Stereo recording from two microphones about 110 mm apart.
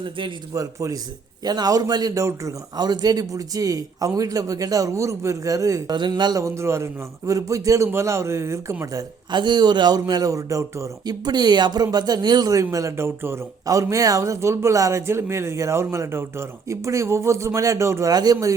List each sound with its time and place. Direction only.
0.0 s a man's voice: 50° right (ahead or behind)
0.5 s a man's voice: 30° right (ahead or behind)
6.0 s speech: 40° right (ahead or behind)
9.3 s a man's voice: 45° right (ahead or behind); by 18.1 s 25° right (ahead or behind)
18.1 s a man's voice: 35° right (ahead or behind)